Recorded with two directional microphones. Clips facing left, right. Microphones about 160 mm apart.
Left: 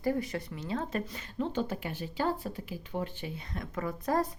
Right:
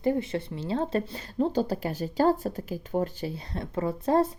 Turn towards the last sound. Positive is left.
turn(degrees=-25)  # may be behind; listen again after turning